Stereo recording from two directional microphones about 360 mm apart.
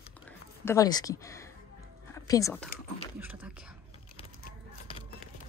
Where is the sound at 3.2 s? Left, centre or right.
Centre.